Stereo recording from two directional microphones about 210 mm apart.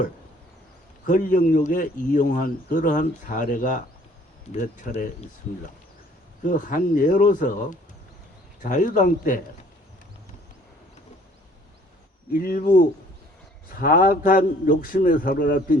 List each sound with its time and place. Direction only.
1.0 s speech: 40° left (ahead or behind)
6.4 s speech: 40° left (ahead or behind)
12.4 s speech: 45° left (ahead or behind)